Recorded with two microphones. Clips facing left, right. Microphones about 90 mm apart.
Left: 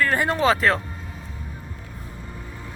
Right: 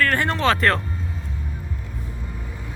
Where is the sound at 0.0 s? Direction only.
15° left (ahead or behind).